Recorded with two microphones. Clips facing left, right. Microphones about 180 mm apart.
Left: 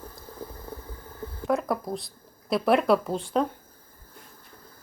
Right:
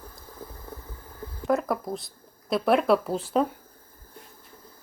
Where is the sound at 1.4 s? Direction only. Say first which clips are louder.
Right 1 dB; centre (ahead or behind).